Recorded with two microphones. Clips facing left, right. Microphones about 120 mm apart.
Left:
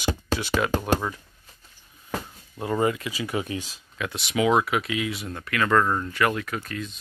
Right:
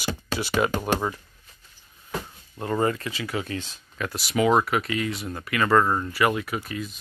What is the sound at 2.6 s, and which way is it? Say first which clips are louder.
Speech: even; 10° left (ahead or behind).